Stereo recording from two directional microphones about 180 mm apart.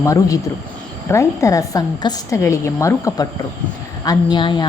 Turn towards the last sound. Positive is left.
turn(degrees=25)  # may be behind; listen again after turning